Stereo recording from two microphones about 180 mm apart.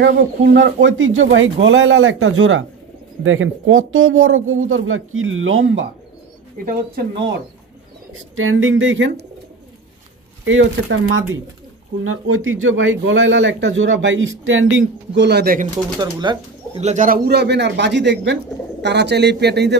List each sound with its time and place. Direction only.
0.0 s a man's voice: 60° right (ahead or behind); by 5.9 s 90° right
6.6 s speech: 50° right (ahead or behind)
8.1 s a man's voice: 90° right
10.4 s a man's voice: 90° right; by 15.7 s 55° right (ahead or behind)
16.0 s speech: 25° right (ahead or behind)
16.8 s speech: 45° right (ahead or behind); by 19.8 s 65° right (ahead or behind)